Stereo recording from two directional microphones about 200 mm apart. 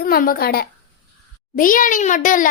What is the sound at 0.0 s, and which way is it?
A woman's voice, 45° left (ahead or behind).